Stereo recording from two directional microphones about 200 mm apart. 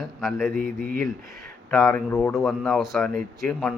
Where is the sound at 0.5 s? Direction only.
45° right (ahead or behind).